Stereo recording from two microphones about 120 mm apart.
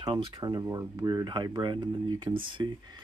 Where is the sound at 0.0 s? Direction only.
40° right (ahead or behind).